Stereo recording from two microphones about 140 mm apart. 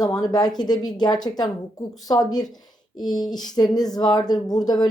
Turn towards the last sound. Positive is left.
turn(degrees=30)  # may be behind; listen again after turning